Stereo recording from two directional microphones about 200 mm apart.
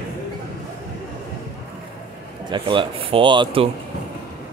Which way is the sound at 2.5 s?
25° right (ahead or behind).